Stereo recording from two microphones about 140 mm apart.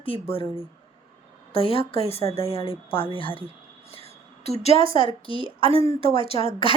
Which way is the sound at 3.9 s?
45° left (ahead or behind).